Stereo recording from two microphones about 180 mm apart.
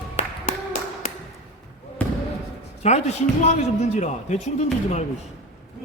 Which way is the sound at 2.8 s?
40° left (ahead or behind).